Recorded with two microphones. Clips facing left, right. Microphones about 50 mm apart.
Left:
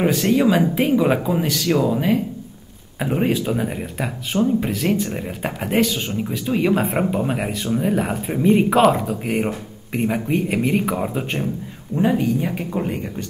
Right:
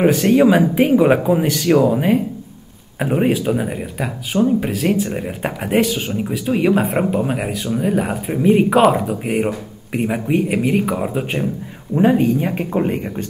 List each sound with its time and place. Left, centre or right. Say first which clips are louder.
0.0 s speech: right 4 dB; centre
3.0 s speech: right 3 dB; centre
11.9 s speech: right 4 dB; right